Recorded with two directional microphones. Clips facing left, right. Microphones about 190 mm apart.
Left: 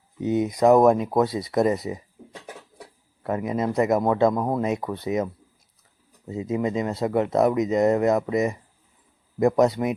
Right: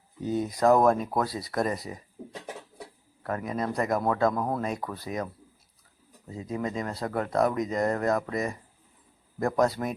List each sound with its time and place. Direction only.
0.2 s speech: 20° left (ahead or behind)
3.2 s speech: 20° left (ahead or behind)